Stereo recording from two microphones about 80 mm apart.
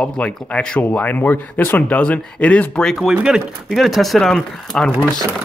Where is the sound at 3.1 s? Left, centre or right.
Centre.